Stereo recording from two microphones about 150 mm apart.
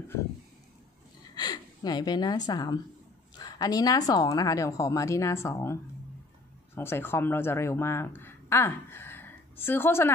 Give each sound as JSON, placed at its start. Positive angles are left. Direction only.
{"t": 1.3, "sound": "a woman's voice", "side_deg": 25}